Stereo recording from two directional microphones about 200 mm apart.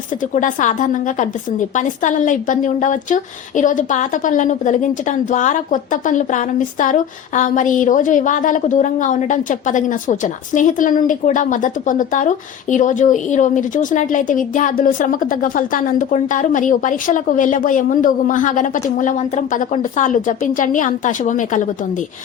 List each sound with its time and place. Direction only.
0.2 s a woman's voice: 40° left (ahead or behind)